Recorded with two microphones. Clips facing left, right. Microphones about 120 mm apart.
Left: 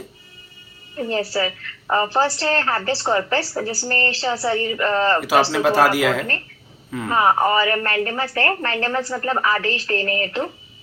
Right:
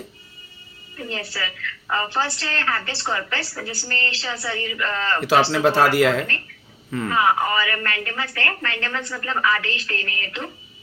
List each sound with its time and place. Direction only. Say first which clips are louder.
0.9 s a woman's voice: left 9 dB; 40° left (ahead or behind)
5.5 s speech: left 1 dB; 5° left (ahead or behind)
7.1 s a woman's voice: left 4 dB; 35° left (ahead or behind)